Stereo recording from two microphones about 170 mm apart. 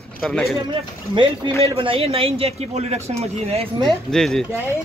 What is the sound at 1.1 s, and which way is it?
Speech, 30° right (ahead or behind).